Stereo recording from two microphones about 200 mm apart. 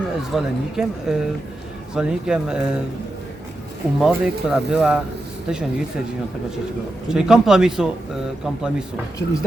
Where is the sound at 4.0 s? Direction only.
5° right (ahead or behind).